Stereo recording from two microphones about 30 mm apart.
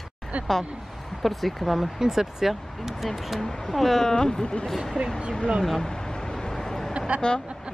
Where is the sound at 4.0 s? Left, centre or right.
Centre.